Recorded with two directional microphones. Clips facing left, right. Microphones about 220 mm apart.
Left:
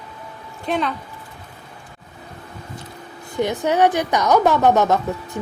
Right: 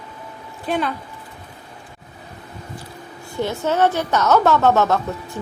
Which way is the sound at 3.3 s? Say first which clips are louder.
Left 2 dB; 15° left (ahead or behind).